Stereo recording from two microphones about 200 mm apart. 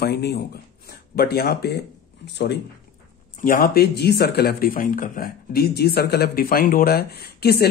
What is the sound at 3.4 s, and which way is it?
Speech, 45° left (ahead or behind).